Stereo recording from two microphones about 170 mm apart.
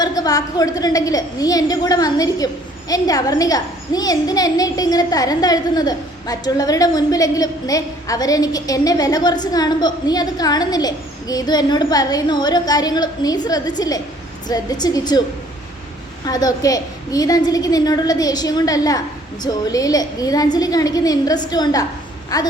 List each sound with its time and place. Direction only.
0.0 s a child's voice: 20° left (ahead or behind)
16.2 s a child's voice: 20° left (ahead or behind)